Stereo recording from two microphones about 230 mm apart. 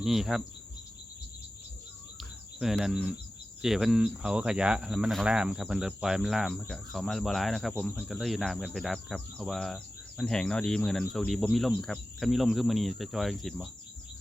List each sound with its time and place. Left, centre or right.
0.0 s speech: centre
2.6 s speech: centre